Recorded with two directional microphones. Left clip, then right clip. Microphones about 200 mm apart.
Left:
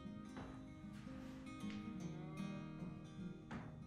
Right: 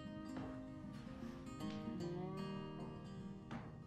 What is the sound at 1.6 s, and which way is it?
Music, 60° right (ahead or behind).